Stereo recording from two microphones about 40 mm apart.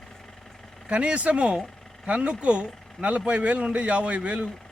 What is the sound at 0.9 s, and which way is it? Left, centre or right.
A man's voice, right.